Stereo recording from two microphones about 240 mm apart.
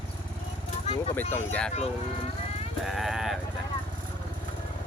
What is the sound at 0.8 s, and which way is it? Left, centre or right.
Vehicle, left.